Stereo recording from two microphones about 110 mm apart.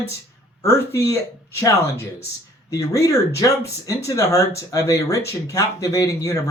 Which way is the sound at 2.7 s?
30° left (ahead or behind).